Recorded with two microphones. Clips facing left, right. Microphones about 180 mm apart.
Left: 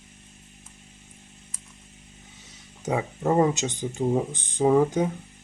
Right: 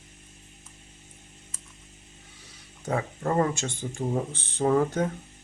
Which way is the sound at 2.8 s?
15° left (ahead or behind).